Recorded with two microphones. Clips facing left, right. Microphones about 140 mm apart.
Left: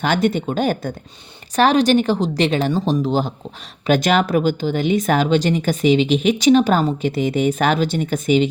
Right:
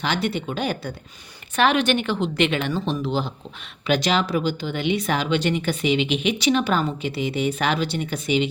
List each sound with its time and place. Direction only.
0.0 s a woman's voice: 45° left (ahead or behind)